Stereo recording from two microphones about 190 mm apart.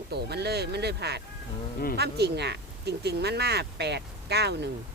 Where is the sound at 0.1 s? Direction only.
60° right (ahead or behind).